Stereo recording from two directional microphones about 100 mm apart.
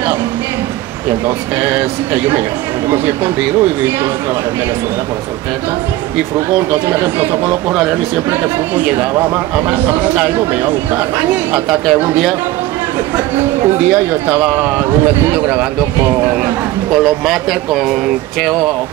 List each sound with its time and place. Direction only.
7.0 s speech: 20° right (ahead or behind)
9.7 s a man's voice: 15° right (ahead or behind)
11.5 s speech: 5° right (ahead or behind)
14.3 s a man's voice: 15° right (ahead or behind)
16.9 s speech: centre (ahead or behind)